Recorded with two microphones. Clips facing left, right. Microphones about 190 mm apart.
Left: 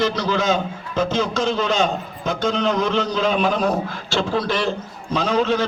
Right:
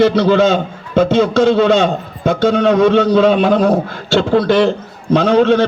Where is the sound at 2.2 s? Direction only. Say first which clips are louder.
Right 9 dB; 60° right (ahead or behind).